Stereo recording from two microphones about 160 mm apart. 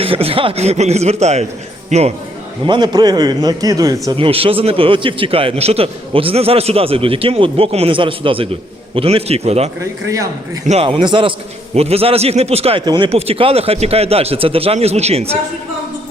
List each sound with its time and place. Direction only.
0.0 s a man's voice: 35° right (ahead or behind)
2.6 s a man's voice: 25° right (ahead or behind)
4.2 s a man's voice: 35° right (ahead or behind)
10.1 s a man's voice: 20° right (ahead or behind)
10.7 s a man's voice: 35° right (ahead or behind)
12.8 s a man's voice: 25° right (ahead or behind)
13.1 s a man's voice: 40° right (ahead or behind)